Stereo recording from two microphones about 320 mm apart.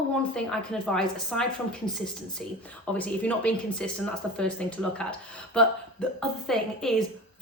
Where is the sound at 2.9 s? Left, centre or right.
Centre.